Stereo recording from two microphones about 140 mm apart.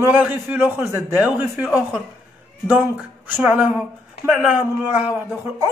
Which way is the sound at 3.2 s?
10° right (ahead or behind).